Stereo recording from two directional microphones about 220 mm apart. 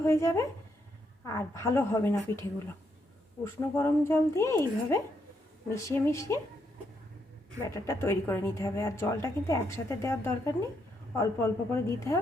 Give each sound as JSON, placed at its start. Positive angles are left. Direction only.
{"t": 0.0, "sound": "a woman's voice", "side_deg": 10}
{"t": 3.4, "sound": "a woman's voice", "side_deg": 10}
{"t": 7.7, "sound": "a woman's voice", "side_deg": 10}